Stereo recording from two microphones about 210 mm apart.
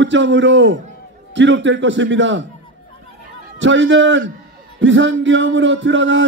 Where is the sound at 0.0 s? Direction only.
60° right (ahead or behind).